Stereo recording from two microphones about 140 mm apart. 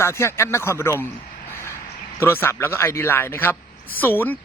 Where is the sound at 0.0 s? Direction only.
20° left (ahead or behind).